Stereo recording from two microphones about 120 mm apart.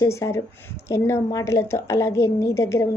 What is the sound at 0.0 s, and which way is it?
A woman's voice, 25° left (ahead or behind).